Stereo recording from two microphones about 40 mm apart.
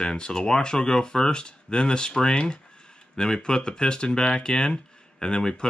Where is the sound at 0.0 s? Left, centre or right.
Centre.